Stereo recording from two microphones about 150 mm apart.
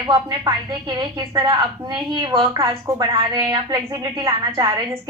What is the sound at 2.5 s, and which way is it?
A woman's voice, 20° right (ahead or behind).